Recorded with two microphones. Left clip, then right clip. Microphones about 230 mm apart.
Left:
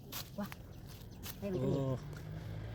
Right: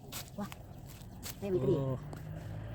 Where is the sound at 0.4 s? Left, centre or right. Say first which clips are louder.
Right 1 dB; right.